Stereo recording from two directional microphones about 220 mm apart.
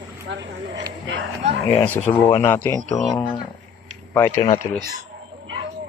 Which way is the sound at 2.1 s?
10° left (ahead or behind).